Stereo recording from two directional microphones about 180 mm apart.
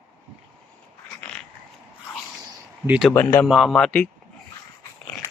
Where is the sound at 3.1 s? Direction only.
10° left (ahead or behind).